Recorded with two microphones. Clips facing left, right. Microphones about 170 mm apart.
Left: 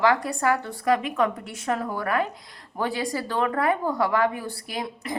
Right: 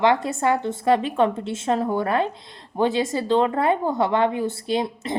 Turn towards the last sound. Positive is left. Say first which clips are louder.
# right 8 dB
turn(degrees=-25)  # may be behind; listen again after turning